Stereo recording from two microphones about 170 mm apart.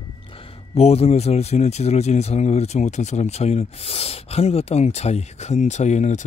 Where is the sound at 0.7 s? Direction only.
35° left (ahead or behind).